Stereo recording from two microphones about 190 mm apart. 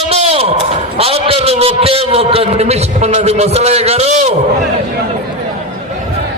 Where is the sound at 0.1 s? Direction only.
35° right (ahead or behind).